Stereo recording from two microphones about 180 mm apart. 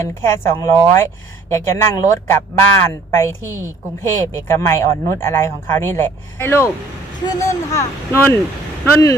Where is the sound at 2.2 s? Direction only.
15° left (ahead or behind).